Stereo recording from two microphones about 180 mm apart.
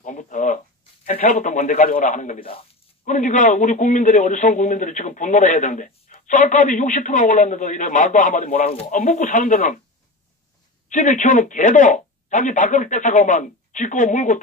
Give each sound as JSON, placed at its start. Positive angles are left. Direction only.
{"t": 0.0, "sound": "a sound", "side_deg": 45}
{"t": 1.0, "sound": "a man's voice", "side_deg": 45}
{"t": 10.9, "sound": "a man's voice", "side_deg": 45}